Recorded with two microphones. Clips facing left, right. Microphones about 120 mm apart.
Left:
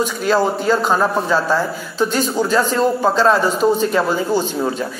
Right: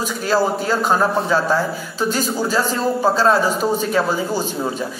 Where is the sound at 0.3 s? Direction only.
10° right (ahead or behind).